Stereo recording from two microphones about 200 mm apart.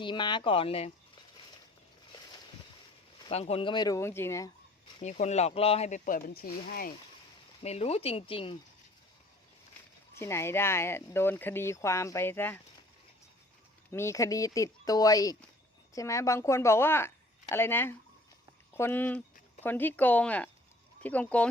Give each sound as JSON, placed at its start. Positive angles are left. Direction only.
{"t": 0.0, "sound": "speech", "side_deg": 20}
{"t": 3.2, "sound": "speech", "side_deg": 30}
{"t": 4.9, "sound": "speech", "side_deg": 35}
{"t": 7.6, "sound": "speech", "side_deg": 30}
{"t": 10.2, "sound": "speech", "side_deg": 15}
{"t": 13.9, "sound": "speech", "side_deg": 15}